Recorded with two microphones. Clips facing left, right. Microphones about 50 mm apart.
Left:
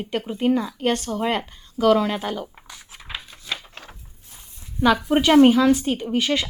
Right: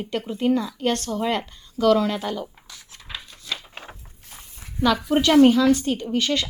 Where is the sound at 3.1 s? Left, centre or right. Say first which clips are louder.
Left 1 dB; centre.